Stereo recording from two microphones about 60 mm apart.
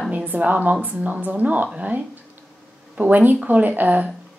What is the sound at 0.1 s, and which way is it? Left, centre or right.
A woman's voice, right.